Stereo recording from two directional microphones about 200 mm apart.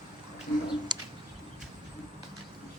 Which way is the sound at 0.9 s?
20° right (ahead or behind).